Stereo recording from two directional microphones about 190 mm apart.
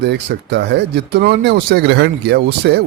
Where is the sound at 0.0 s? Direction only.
65° right (ahead or behind).